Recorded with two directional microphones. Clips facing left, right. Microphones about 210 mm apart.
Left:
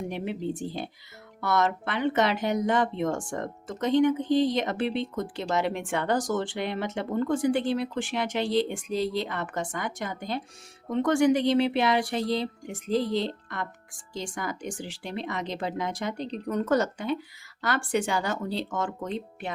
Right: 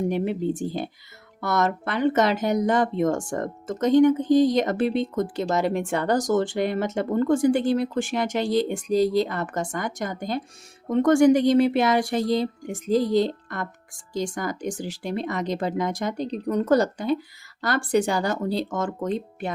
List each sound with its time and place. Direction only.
0.1 s speech: 45° right (ahead or behind)